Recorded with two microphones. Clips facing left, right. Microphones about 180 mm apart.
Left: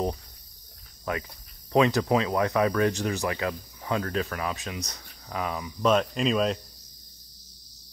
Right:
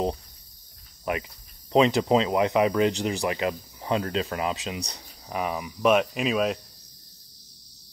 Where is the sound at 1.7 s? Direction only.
20° right (ahead or behind).